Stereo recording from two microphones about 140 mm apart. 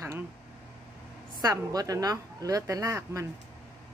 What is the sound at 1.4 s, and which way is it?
Speech, 25° right (ahead or behind).